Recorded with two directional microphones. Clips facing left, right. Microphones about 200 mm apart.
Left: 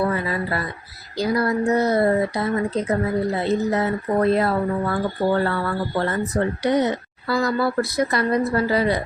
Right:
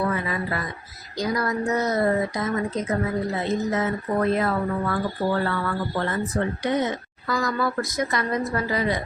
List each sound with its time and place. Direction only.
0.1 s speech: 35° left (ahead or behind)